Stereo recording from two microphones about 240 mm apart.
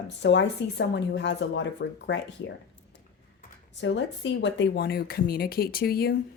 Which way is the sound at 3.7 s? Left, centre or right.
Left.